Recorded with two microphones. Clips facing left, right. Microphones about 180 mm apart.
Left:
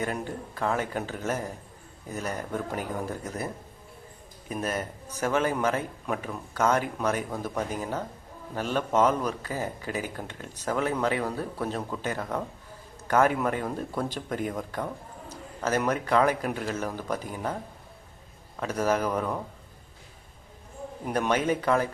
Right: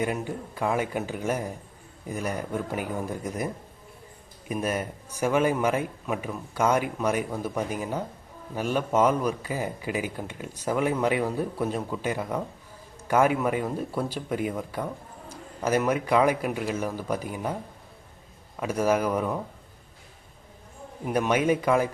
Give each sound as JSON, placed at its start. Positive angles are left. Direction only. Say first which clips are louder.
{"t": 0.0, "sound": "speech", "louder": "right 3 dB", "side_deg": -10}
{"t": 15.3, "sound": "a sound", "louder": "right 3 dB", "side_deg": -10}
{"t": 15.8, "sound": "speech", "louder": "right 1 dB", "side_deg": -10}
{"t": 21.0, "sound": "speech", "louder": "right 2 dB", "side_deg": -10}